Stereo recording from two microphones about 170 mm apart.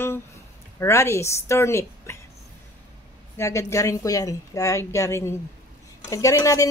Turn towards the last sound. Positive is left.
turn(degrees=20)  # may be behind; listen again after turning